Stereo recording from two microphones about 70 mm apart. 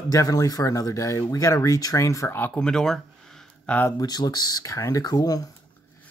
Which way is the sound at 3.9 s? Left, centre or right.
Left.